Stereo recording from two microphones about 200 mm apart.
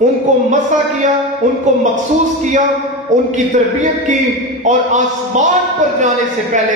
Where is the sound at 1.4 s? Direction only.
40° right (ahead or behind).